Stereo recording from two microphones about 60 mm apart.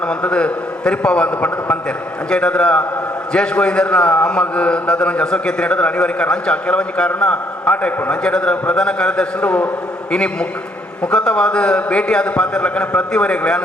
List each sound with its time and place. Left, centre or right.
0.1 s a man's voice: centre
11.0 s a man's voice: centre